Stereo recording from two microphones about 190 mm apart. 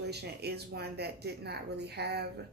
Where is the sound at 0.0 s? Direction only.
60° right (ahead or behind).